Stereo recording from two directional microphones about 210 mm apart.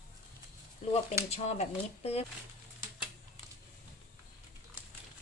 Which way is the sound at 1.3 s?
30° left (ahead or behind).